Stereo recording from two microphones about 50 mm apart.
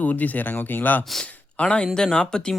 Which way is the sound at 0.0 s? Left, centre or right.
Left.